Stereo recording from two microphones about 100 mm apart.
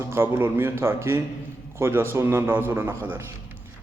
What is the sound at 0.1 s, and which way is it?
A man's voice, 25° right (ahead or behind).